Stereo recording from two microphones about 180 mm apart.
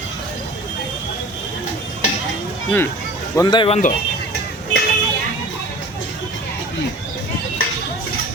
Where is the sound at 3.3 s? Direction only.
25° left (ahead or behind).